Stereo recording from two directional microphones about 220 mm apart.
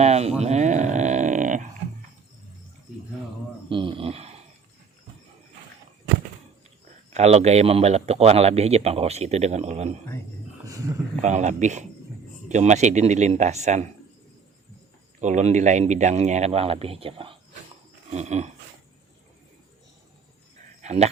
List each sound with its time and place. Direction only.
0.0 s a sound: 30° right (ahead or behind)
3.7 s a sound: 20° right (ahead or behind)
7.1 s speech: 30° right (ahead or behind)
11.2 s speech: 30° right (ahead or behind)
15.2 s speech: 35° right (ahead or behind)
20.8 s speech: 30° right (ahead or behind)